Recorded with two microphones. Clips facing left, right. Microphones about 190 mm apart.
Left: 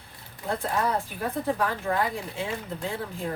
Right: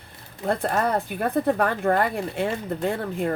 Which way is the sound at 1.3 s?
60° right (ahead or behind).